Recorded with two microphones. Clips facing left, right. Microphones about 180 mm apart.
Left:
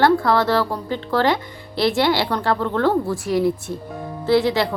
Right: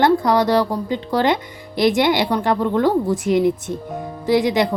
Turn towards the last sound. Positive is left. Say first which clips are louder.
# right 1 dB
turn(degrees=-15)  # may be behind; listen again after turning